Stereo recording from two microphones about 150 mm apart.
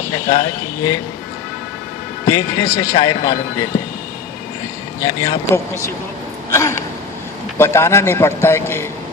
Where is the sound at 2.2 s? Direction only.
25° left (ahead or behind).